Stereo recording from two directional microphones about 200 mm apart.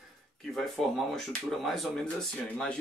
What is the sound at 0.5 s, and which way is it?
Speech, centre (ahead or behind).